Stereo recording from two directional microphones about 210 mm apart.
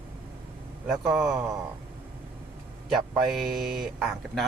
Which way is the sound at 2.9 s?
Centre (ahead or behind).